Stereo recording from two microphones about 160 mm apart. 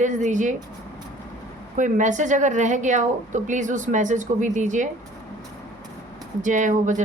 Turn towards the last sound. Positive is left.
turn(degrees=-50)  # may be behind; listen again after turning